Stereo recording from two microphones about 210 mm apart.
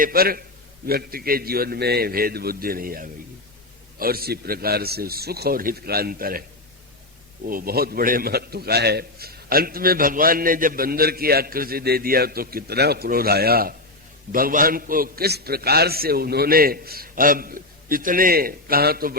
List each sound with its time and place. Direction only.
0.0 s a man's voice: 45° right (ahead or behind)
7.4 s a man's voice: 45° right (ahead or behind)